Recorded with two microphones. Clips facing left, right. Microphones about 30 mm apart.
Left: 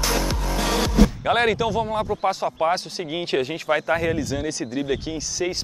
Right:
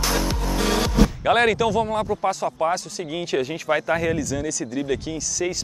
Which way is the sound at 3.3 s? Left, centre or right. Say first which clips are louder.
Even; left.